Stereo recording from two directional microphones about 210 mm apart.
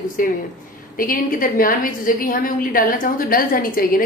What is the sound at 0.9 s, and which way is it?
A woman's voice, 40° left (ahead or behind).